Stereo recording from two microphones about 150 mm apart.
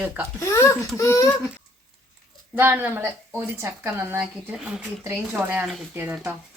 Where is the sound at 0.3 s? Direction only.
20° left (ahead or behind).